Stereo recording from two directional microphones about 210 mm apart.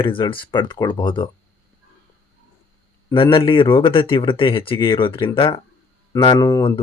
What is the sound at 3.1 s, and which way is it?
Speech, 25° left (ahead or behind).